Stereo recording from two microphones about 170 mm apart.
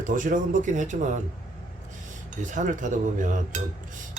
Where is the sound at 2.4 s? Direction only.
45° right (ahead or behind).